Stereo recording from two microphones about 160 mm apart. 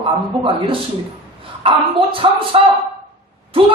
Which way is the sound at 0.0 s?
35° right (ahead or behind).